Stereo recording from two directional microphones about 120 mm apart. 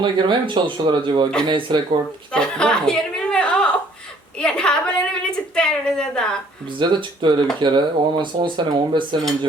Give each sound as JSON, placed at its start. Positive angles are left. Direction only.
{"t": 0.0, "sound": "speech", "side_deg": -40}
{"t": 2.3, "sound": "chuckle", "side_deg": 5}
{"t": 4.4, "sound": "a sound", "side_deg": 5}
{"t": 6.7, "sound": "speech", "side_deg": -40}